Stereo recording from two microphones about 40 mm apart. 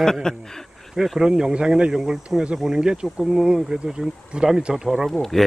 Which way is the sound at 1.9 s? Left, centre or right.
Centre.